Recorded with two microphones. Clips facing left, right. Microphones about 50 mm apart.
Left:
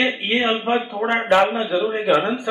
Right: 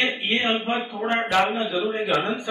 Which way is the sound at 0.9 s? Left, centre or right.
Centre.